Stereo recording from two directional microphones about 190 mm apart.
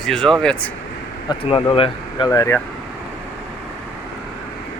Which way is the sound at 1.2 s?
30° left (ahead or behind).